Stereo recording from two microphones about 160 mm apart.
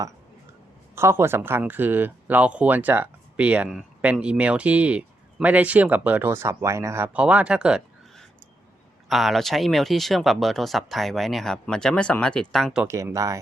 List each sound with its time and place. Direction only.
0.9 s speech: 15° right (ahead or behind); by 12.8 s centre (ahead or behind)
12.8 s speech: 15° right (ahead or behind)